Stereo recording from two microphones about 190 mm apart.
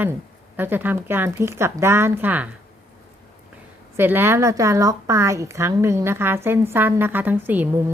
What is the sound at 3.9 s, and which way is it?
A woman's voice, 10° right (ahead or behind).